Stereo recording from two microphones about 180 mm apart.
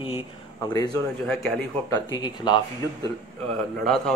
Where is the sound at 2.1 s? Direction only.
25° left (ahead or behind).